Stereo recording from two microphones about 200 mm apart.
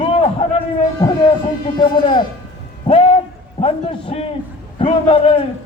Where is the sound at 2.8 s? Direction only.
25° left (ahead or behind).